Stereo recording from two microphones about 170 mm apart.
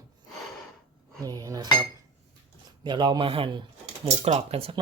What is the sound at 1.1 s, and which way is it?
Speech, 20° right (ahead or behind).